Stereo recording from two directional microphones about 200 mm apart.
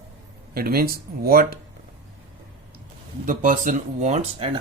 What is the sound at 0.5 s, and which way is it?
Speech, 50° right (ahead or behind).